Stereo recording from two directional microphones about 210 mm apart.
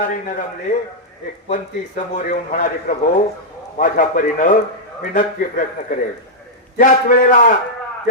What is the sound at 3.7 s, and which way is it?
Speech, 40° left (ahead or behind).